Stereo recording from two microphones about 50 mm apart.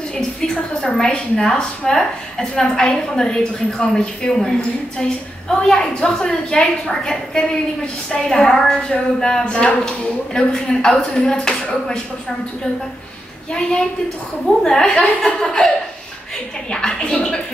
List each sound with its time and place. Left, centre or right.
0.4 s a woman's voice: centre
13.5 s a woman's voice: centre
16.7 s a woman's voice: centre